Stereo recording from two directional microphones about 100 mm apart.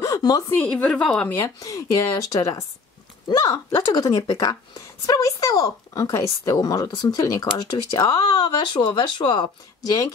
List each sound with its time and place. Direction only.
0.0 s a sound: 40° left (ahead or behind)
0.5 s a woman's voice: 15° left (ahead or behind)
1.6 s speech: 35° left (ahead or behind)